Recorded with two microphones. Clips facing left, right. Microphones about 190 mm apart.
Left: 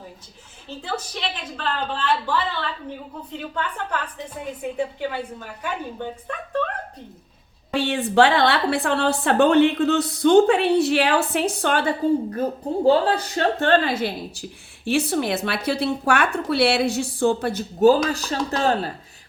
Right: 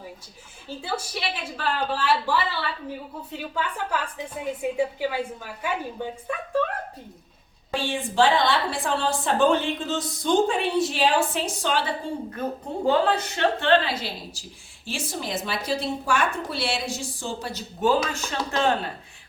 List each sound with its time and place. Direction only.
0.7 s a woman's voice: 10° right (ahead or behind)
7.7 s a woman's voice: 65° left (ahead or behind)
12.8 s a woman's voice: 35° left (ahead or behind); by 14.4 s 50° left (ahead or behind)
14.8 s a woman's voice: 65° left (ahead or behind); by 18.9 s 40° left (ahead or behind)